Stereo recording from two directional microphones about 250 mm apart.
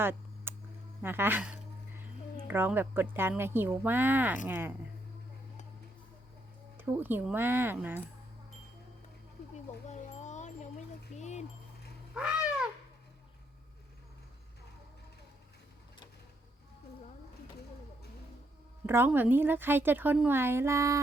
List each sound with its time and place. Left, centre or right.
0.0 s a sound: centre
1.0 s a woman's voice: centre
6.7 s a woman's voice: centre
9.9 s wind chime: left
11.2 s a sound: left
12.1 s cat: centre
18.9 s a woman's voice: centre